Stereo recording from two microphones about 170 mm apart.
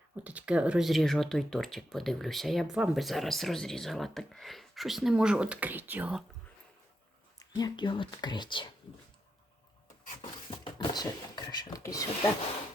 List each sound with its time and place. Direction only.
0.2 s speech: 10° right (ahead or behind)
7.3 s speech: 25° left (ahead or behind)
10.5 s speech: 30° left (ahead or behind)